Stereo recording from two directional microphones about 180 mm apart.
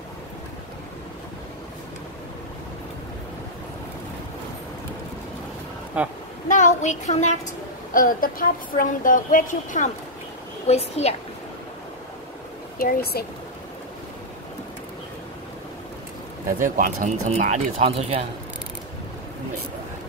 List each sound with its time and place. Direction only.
6.0 s speech: 10° right (ahead or behind)
6.5 s a woman's voice: 45° left (ahead or behind)
12.7 s a woman's voice: 50° left (ahead or behind)
16.7 s speech: 45° right (ahead or behind)